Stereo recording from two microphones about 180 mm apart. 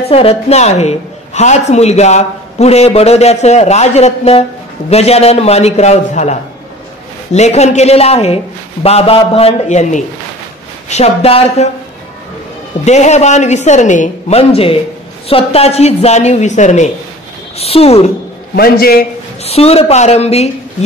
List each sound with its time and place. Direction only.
0.1 s a woman's voice: 35° left (ahead or behind)
7.3 s a woman's voice: 40° left (ahead or behind)
12.8 s a woman's voice: 40° left (ahead or behind)
18.6 s a man's voice: 55° left (ahead or behind)
19.4 s a woman's voice: 35° left (ahead or behind)